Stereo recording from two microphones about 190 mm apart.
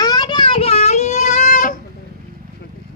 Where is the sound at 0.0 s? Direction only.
20° left (ahead or behind); by 1.8 s 40° left (ahead or behind).